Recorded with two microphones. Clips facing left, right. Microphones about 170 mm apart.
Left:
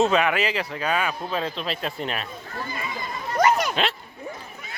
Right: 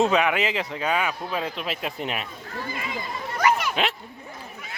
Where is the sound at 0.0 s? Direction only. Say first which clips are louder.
Even; 15° right (ahead or behind).